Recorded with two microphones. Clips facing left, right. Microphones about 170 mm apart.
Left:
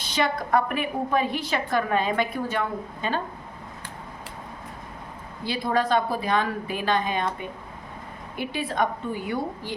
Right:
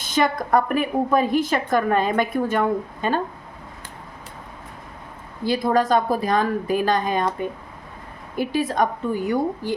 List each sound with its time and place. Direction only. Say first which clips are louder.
0.0 s a woman's voice: right 4 dB; 45° right (ahead or behind)
5.5 s a woman's voice: right 5 dB; 45° right (ahead or behind)
8.4 s a woman's voice: right 5 dB; 40° right (ahead or behind)